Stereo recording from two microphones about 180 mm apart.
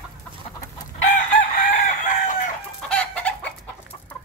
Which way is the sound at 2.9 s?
5° left (ahead or behind).